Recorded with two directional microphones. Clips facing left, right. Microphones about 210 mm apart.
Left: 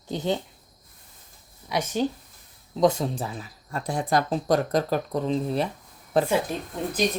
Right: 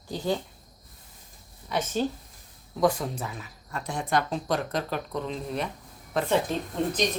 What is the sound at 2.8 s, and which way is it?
Speech, 25° left (ahead or behind).